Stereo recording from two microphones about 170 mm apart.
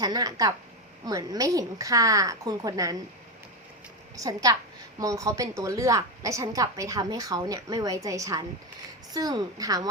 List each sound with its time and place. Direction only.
0.0 s a woman's voice: 20° right (ahead or behind)
4.2 s a woman's voice: 20° right (ahead or behind)